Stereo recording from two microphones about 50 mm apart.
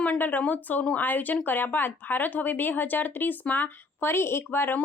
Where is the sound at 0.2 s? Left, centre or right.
Left.